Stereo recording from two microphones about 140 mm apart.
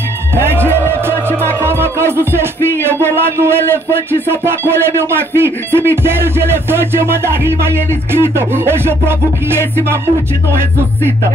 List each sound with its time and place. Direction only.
0.6 s music: 15° right (ahead or behind)
3.2 s speech: 15° right (ahead or behind)